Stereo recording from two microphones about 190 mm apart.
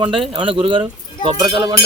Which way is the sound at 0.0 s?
30° right (ahead or behind).